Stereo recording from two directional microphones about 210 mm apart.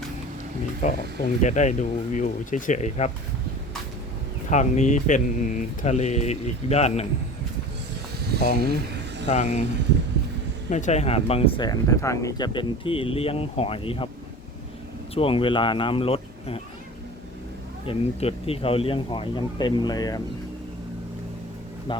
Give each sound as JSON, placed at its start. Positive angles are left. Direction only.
{"t": 0.8, "sound": "speech", "side_deg": 35}
{"t": 4.4, "sound": "speech", "side_deg": 35}
{"t": 8.6, "sound": "vehicle", "side_deg": -50}
{"t": 9.2, "sound": "speech", "side_deg": 35}
{"t": 10.7, "sound": "speech", "side_deg": 35}
{"t": 15.1, "sound": "speech", "side_deg": 25}
{"t": 17.8, "sound": "speech", "side_deg": 30}